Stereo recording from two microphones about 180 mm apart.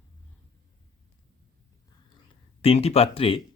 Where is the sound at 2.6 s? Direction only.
35° left (ahead or behind).